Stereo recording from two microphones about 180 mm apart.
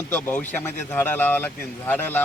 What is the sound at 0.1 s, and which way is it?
Speech, 10° left (ahead or behind).